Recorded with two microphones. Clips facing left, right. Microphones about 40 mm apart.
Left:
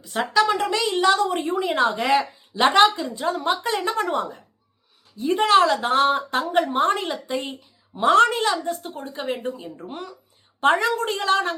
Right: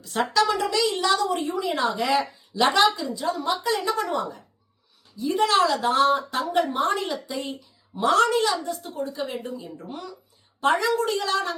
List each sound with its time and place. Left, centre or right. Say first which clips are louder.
0.0 s a woman's voice: left 2 dB; centre
0.4 s a woman's voice: left 1 dB; left